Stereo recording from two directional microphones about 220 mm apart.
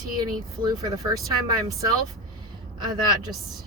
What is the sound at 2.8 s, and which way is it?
Speech, 20° right (ahead or behind).